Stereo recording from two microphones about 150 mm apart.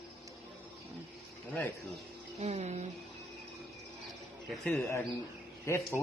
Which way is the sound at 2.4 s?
45° right (ahead or behind).